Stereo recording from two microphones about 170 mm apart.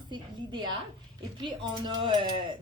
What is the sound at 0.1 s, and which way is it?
A woman's voice, 25° right (ahead or behind).